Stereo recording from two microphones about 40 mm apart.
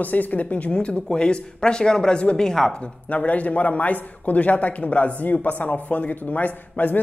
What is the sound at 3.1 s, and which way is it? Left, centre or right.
A man's voice, left.